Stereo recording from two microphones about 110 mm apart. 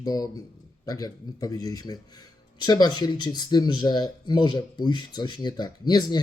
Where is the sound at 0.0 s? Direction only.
35° left (ahead or behind).